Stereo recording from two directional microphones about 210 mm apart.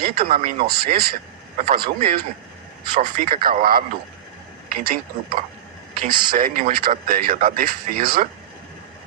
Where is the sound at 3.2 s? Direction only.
45° right (ahead or behind).